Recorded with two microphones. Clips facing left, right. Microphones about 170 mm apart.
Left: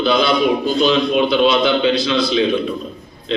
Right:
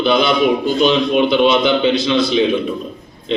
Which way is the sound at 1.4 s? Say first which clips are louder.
Right 1 dB; 20° right (ahead or behind).